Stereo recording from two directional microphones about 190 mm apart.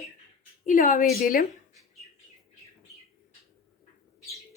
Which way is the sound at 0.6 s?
45° left (ahead or behind).